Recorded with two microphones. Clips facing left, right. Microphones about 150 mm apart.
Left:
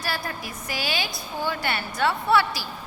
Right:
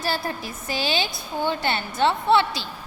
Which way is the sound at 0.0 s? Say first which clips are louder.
Right 4 dB; 25° right (ahead or behind).